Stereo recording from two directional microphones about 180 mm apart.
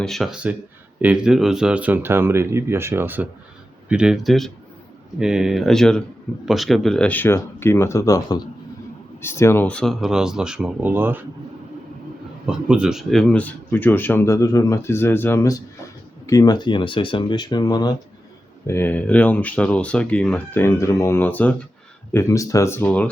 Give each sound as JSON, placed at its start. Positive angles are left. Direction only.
{"t": 0.0, "sound": "a man's voice", "side_deg": 0}
{"t": 12.5, "sound": "speech", "side_deg": -5}
{"t": 18.7, "sound": "speech", "side_deg": 10}